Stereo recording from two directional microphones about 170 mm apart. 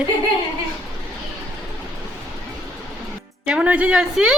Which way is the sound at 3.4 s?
5° right (ahead or behind).